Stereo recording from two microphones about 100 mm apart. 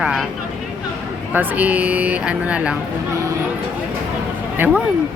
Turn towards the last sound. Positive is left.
turn(degrees=-20)  # may be behind; listen again after turning